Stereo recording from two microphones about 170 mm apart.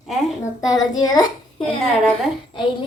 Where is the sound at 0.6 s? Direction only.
20° left (ahead or behind).